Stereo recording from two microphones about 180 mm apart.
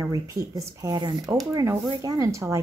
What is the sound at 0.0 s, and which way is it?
Speech, 20° right (ahead or behind).